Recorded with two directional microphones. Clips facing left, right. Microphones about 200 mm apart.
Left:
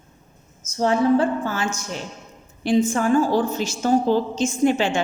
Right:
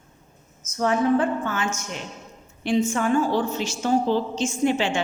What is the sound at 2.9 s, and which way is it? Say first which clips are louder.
A woman's voice: left 3 dB; 40° left (ahead or behind).